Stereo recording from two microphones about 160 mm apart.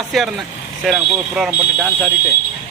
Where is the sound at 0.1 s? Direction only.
Centre (ahead or behind).